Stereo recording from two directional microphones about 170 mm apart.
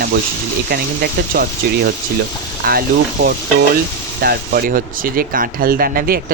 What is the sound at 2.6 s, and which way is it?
Speech, 60° right (ahead or behind).